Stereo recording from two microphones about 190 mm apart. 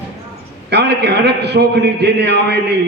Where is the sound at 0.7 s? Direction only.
60° right (ahead or behind).